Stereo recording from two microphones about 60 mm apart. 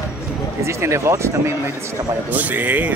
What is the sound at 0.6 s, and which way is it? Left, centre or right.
Speech, right.